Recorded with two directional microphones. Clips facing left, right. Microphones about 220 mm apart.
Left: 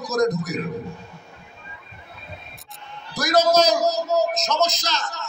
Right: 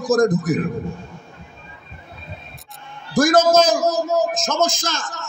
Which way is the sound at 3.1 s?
50° right (ahead or behind).